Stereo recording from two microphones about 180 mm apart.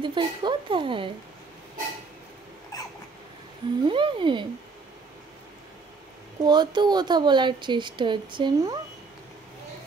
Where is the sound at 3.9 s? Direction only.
30° right (ahead or behind).